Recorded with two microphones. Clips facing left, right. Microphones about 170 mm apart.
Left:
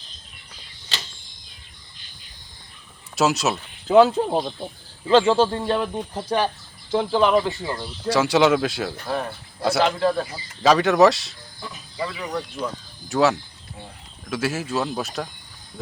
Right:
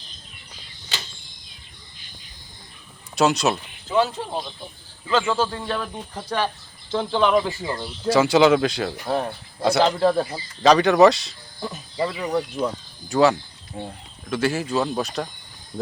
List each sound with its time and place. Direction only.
3.2 s speech: centre (ahead or behind)
3.8 s speech: 65° left (ahead or behind)
4.2 s speech: 45° left (ahead or behind)
5.0 s speech: 30° left (ahead or behind)
6.9 s a man's voice: 5° left (ahead or behind)
9.8 s speech: 25° right (ahead or behind)
10.6 s speech: centre (ahead or behind)
11.9 s speech: 25° right (ahead or behind)
13.1 s speech: centre (ahead or behind)
13.8 s speech: 50° right (ahead or behind)
14.3 s speech: 5° left (ahead or behind)